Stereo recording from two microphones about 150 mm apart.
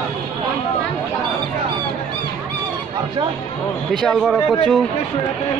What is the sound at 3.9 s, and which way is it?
Speech, centre (ahead or behind).